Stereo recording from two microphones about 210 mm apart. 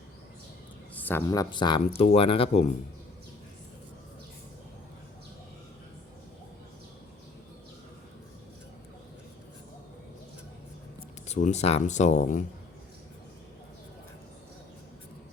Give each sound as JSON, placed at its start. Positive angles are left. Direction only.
{"t": 0.9, "sound": "speech", "side_deg": 10}
{"t": 11.3, "sound": "speech", "side_deg": 35}